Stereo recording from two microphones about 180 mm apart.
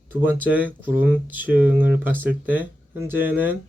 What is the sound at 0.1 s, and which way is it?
Speech, 10° right (ahead or behind).